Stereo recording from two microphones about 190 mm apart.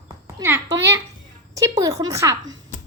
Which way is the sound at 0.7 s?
65° right (ahead or behind).